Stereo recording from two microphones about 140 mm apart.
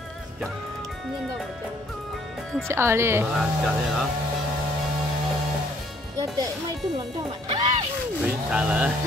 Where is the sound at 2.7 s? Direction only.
20° right (ahead or behind).